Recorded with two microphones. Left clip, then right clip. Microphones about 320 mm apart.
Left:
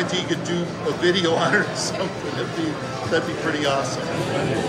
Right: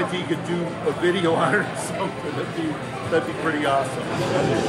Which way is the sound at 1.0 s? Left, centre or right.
Right.